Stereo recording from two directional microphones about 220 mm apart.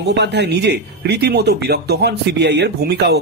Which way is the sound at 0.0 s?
50° right (ahead or behind).